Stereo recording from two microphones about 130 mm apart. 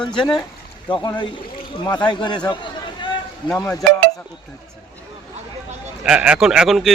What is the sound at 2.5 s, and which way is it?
Chatter, 40° left (ahead or behind).